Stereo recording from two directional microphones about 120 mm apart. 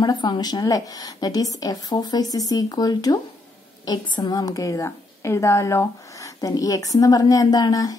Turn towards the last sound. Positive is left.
turn(degrees=30)  # may be behind; listen again after turning